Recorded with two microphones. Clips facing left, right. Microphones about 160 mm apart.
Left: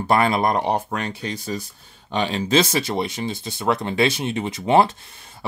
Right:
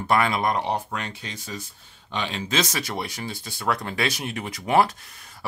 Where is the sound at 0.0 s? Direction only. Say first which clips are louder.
Left 3 dB; 35° left (ahead or behind).